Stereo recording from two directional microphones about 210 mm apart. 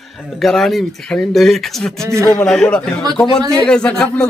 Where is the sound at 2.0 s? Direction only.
15° right (ahead or behind).